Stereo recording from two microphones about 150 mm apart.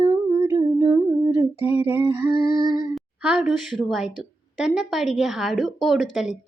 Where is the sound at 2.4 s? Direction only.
80° left.